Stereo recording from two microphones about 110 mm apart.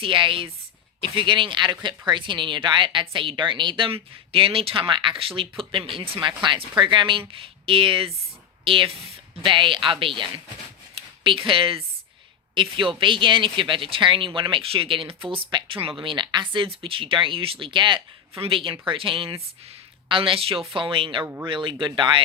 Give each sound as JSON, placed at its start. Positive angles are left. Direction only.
{"t": 0.0, "sound": "speech", "side_deg": -50}